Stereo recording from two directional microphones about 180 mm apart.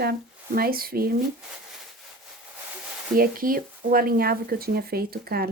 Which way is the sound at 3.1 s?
50° right (ahead or behind).